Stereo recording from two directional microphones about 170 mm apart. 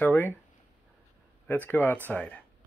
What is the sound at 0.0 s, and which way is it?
Speech, 10° left (ahead or behind).